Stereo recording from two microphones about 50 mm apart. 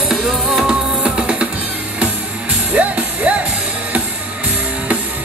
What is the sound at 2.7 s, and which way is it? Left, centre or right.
Music, right.